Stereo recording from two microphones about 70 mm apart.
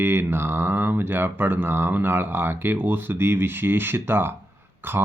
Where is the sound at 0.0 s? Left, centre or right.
Right.